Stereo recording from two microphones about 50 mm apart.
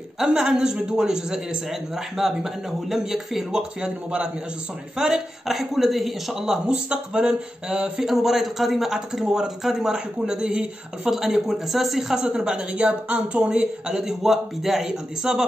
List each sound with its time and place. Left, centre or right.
0.4 s speech: centre
3.8 s speech: centre
5.5 s a man's voice: centre
8.0 s speech: centre
11.1 s speech: centre